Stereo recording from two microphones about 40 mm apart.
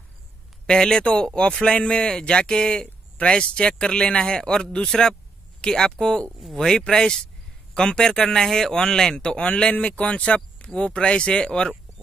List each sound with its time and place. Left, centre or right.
0.7 s speech: centre
6.4 s speech: centre
6.7 s speech: centre